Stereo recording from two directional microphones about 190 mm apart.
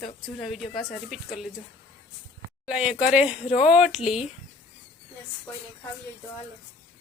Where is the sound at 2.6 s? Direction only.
5° right (ahead or behind).